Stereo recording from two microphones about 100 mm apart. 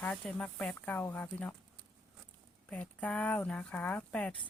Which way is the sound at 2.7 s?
15° left (ahead or behind).